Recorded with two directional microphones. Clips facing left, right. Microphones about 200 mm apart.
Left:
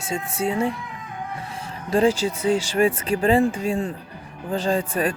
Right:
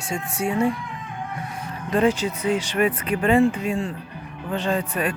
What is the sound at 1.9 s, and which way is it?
Speech, 30° left (ahead or behind).